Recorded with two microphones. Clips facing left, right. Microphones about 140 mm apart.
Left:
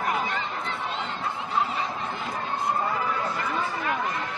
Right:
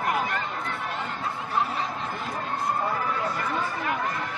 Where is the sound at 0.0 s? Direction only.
5° right (ahead or behind).